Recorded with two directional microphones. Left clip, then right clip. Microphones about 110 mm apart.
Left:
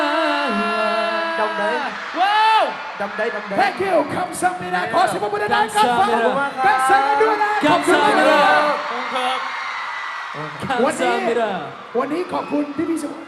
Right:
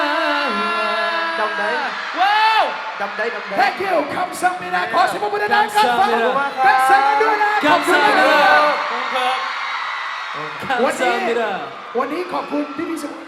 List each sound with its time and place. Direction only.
0.0 s music: 35° right (ahead or behind)
3.2 s speech: 30° right (ahead or behind)
10.7 s speech: 30° right (ahead or behind)